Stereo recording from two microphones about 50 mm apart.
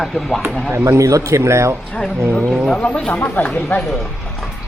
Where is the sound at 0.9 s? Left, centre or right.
Right.